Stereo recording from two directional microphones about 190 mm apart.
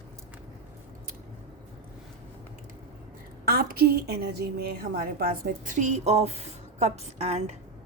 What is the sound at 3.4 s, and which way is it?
A woman's voice, 50° right (ahead or behind).